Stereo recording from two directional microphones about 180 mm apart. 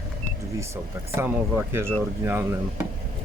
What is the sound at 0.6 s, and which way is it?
Speech, 15° right (ahead or behind).